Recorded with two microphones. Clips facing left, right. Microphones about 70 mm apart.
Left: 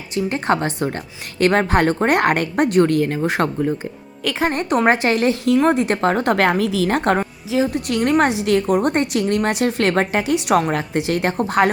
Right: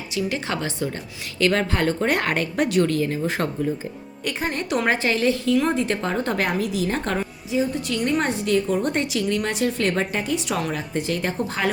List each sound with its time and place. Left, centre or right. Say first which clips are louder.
0.1 s a woman's voice: left 7 dB; left
4.2 s a woman's voice: left 6 dB; left
4.4 s a woman's voice: left 6 dB; left
7.5 s a woman's voice: left 4 dB; left